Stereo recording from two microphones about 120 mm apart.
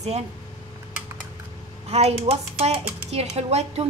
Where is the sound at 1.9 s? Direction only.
60° right (ahead or behind).